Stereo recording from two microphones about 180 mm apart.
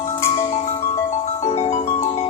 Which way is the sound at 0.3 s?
40° left (ahead or behind).